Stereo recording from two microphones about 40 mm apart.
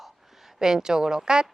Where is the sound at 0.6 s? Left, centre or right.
Centre.